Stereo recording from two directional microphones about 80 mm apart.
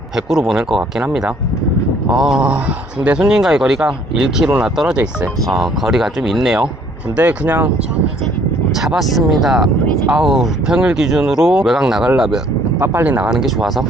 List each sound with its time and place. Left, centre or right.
0.2 s speech: centre
7.2 s speech: right
8.7 s speech: centre
12.8 s speech: right
13.1 s speech: centre